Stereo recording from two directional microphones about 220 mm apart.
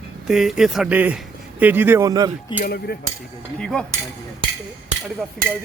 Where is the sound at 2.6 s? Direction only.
45° left (ahead or behind).